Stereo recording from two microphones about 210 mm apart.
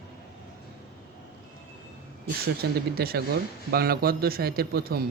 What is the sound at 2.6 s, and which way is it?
A man's voice, 50° right (ahead or behind).